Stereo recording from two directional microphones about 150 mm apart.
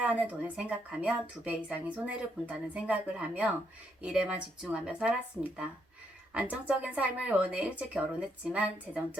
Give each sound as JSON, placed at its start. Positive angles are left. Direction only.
{"t": 0.0, "sound": "a woman's voice", "side_deg": -10}